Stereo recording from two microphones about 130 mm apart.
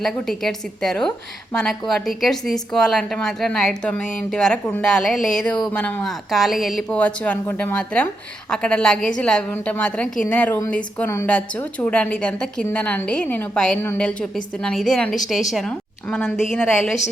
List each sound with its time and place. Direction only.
0.0 s a woman's voice: centre (ahead or behind)